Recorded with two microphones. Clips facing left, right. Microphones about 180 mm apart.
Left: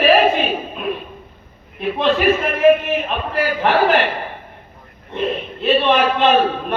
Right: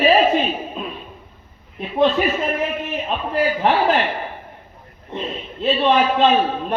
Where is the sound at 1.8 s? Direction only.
90° left.